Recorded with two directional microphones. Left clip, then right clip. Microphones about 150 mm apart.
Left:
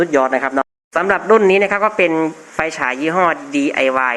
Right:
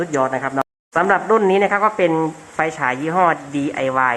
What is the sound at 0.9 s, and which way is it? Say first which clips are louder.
Speech: left 2 dB; 15° left (ahead or behind).